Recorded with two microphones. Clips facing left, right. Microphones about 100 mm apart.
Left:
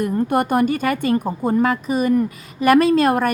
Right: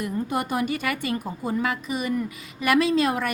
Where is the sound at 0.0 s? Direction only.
55° left (ahead or behind).